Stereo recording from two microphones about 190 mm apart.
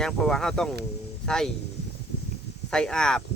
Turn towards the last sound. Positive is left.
turn(degrees=5)  # may be behind; listen again after turning